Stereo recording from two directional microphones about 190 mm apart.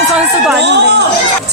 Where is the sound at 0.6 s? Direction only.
65° right (ahead or behind).